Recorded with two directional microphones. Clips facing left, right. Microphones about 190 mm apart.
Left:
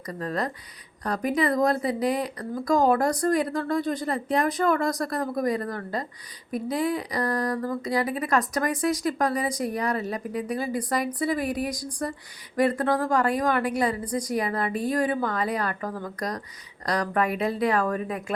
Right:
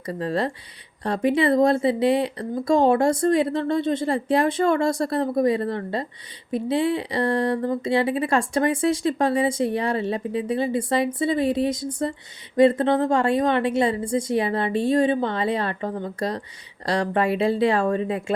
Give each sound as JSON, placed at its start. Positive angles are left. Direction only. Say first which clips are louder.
{"t": 0.0, "sound": "speech", "louder": "right 5 dB", "side_deg": -30}